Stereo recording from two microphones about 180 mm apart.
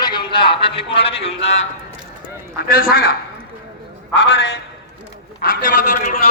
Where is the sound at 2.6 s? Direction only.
55° left (ahead or behind).